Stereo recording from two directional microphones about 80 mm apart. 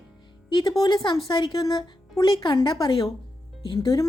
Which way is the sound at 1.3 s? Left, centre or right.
Left.